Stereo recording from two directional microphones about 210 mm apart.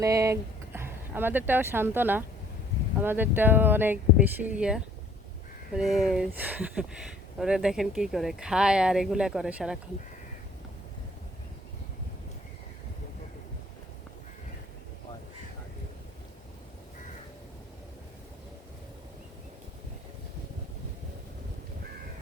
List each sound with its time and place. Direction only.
0.0 s speech: 15° right (ahead or behind)